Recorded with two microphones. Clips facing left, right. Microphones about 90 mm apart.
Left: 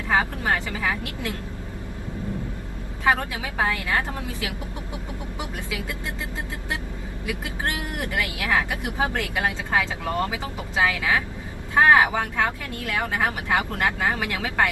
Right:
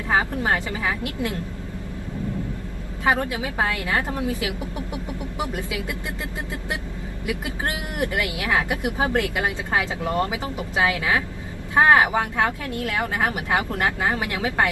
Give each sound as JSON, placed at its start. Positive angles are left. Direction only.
{"t": 0.1, "sound": "speech", "side_deg": -20}
{"t": 3.0, "sound": "speech", "side_deg": -20}
{"t": 7.3, "sound": "speech", "side_deg": -20}